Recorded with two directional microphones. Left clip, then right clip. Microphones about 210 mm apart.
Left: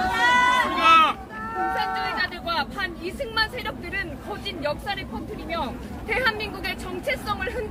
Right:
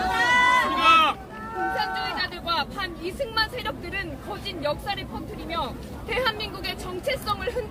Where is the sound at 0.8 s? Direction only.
Centre (ahead or behind).